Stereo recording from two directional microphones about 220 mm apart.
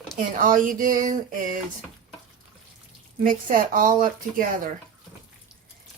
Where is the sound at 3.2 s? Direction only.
40° right (ahead or behind).